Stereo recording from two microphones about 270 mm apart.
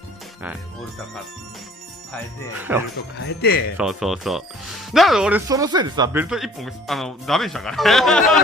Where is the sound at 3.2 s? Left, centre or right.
Left.